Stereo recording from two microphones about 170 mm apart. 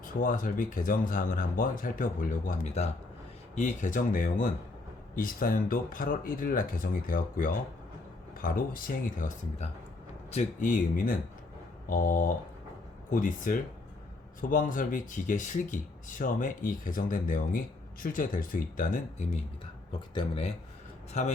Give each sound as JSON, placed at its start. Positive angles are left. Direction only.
{"t": 0.0, "sound": "speech", "side_deg": 50}
{"t": 2.5, "sound": "speech", "side_deg": 40}
{"t": 19.9, "sound": "speech", "side_deg": 30}
{"t": 21.1, "sound": "speech", "side_deg": 40}